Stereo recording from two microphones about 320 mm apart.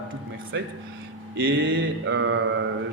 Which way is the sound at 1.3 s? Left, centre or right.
Right.